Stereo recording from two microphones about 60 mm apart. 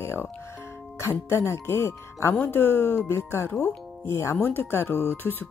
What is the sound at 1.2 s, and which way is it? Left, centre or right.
Speech, left.